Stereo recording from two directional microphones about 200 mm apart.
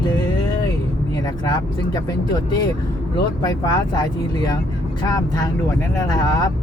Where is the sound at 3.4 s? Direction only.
20° left (ahead or behind).